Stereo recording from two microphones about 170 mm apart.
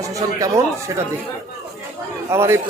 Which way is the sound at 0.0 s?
20° right (ahead or behind).